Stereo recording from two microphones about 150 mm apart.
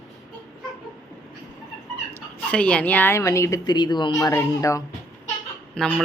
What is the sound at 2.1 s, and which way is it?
Speech, 10° left (ahead or behind).